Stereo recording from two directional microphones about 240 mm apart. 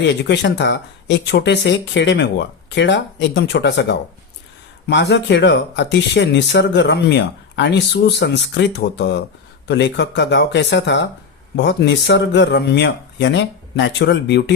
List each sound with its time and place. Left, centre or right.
0.0 s speech: left